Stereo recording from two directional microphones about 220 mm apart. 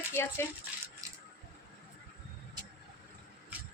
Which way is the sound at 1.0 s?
15° right (ahead or behind).